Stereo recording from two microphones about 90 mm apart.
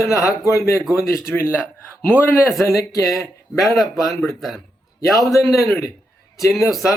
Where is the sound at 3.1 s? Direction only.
Centre (ahead or behind).